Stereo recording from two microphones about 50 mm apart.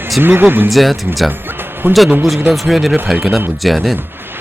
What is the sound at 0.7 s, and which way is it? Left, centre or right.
Speech, centre.